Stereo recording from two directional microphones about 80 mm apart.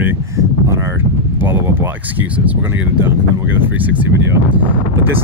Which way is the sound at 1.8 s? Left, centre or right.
Right.